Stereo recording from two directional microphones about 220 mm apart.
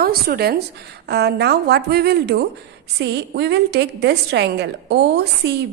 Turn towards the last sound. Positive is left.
turn(degrees=-50)  # may be behind; listen again after turning